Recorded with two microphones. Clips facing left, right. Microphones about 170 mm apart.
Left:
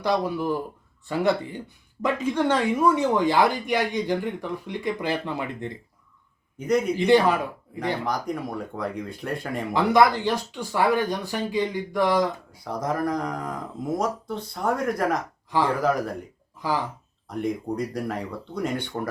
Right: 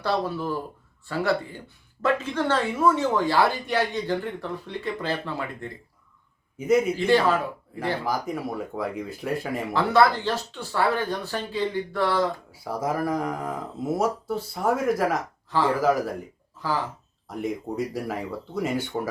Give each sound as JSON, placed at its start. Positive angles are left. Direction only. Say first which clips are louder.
{"t": 0.0, "sound": "speech", "louder": "left 2 dB", "side_deg": 15}
{"t": 6.6, "sound": "speech", "louder": "right 2 dB", "side_deg": -5}
{"t": 6.9, "sound": "speech", "louder": "left 2 dB", "side_deg": 20}
{"t": 8.0, "sound": "speech", "louder": "even", "side_deg": -5}
{"t": 9.7, "sound": "speech", "louder": "left 1 dB", "side_deg": 15}
{"t": 12.5, "sound": "speech", "louder": "even", "side_deg": -5}
{"t": 17.2, "sound": "speech", "louder": "left 2 dB", "side_deg": -5}